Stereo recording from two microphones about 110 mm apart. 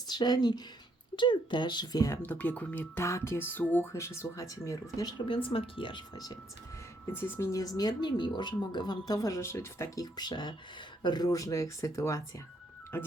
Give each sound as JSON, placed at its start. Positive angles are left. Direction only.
{"t": 0.1, "sound": "speech", "side_deg": 40}
{"t": 2.2, "sound": "speech", "side_deg": 15}
{"t": 4.9, "sound": "speech", "side_deg": 40}
{"t": 6.1, "sound": "speech", "side_deg": 35}
{"t": 7.1, "sound": "speech", "side_deg": 20}